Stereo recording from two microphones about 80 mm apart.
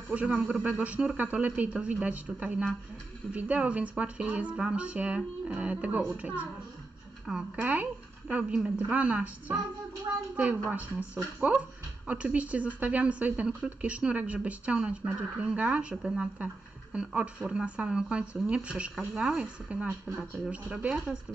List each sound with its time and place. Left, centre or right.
0.1 s speech: centre